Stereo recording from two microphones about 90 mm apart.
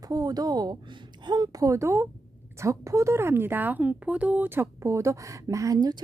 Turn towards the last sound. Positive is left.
turn(degrees=-45)  # may be behind; listen again after turning